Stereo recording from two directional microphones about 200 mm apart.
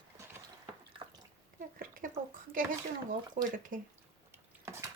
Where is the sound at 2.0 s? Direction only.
45° right (ahead or behind).